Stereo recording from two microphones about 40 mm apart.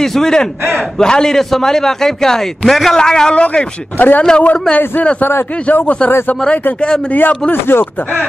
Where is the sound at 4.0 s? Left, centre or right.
Left.